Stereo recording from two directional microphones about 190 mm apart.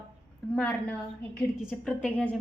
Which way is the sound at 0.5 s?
5° left (ahead or behind).